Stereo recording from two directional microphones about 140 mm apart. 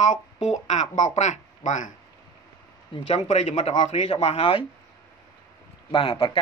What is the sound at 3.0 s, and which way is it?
Speech, 50° left (ahead or behind).